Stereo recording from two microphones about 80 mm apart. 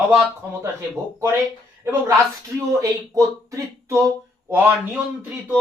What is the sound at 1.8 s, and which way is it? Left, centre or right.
Speech, right.